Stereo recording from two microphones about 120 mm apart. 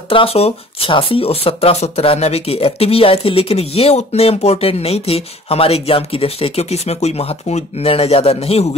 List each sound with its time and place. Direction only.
0.1 s speech: 50° left (ahead or behind)